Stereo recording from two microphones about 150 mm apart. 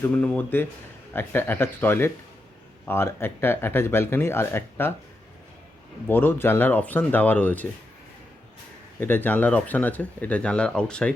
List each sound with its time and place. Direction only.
0.0 s speech: 10° left (ahead or behind)
6.1 s speech: 15° left (ahead or behind)
9.0 s speech: 10° left (ahead or behind)